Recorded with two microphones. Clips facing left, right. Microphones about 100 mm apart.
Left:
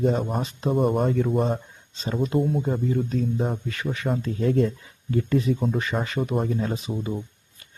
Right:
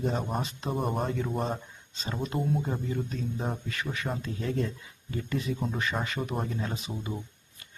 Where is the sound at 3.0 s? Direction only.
45° left (ahead or behind).